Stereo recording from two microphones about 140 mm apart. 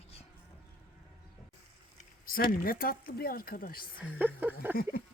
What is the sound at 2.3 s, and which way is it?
Speech, 90° left.